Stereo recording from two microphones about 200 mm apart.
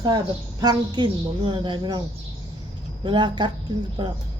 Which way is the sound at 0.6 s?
20° right (ahead or behind).